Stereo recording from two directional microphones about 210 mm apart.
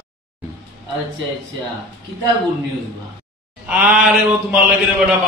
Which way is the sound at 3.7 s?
10° right (ahead or behind).